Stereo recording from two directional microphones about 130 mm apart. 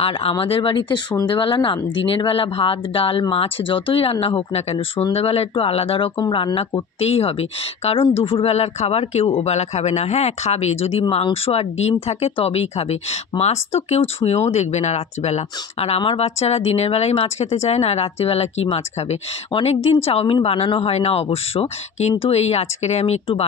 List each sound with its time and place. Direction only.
0.0 s speech: 45° left (ahead or behind)
6.1 s speech: 35° left (ahead or behind); by 23.4 s 55° left (ahead or behind)